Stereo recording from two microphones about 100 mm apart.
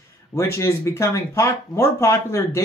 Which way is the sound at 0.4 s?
30° left (ahead or behind).